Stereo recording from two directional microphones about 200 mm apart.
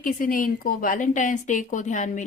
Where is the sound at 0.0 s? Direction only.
45° left (ahead or behind).